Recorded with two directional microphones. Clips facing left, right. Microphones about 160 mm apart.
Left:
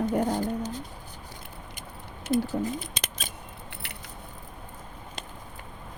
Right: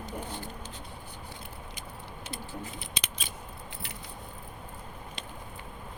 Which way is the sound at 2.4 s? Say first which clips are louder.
Left 11 dB; 45° left (ahead or behind).